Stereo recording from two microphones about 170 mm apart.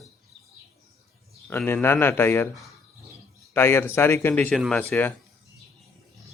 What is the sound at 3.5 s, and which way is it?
Speech, 15° left (ahead or behind).